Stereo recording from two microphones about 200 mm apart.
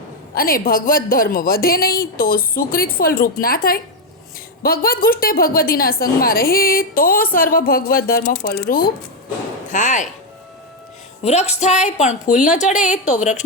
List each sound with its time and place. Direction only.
0.3 s a woman's voice: 45° left (ahead or behind)
9.6 s speech: 40° left (ahead or behind)
11.2 s a woman's voice: 35° left (ahead or behind)